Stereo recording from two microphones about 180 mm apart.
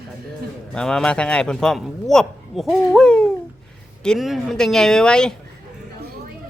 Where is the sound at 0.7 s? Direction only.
5° left (ahead or behind).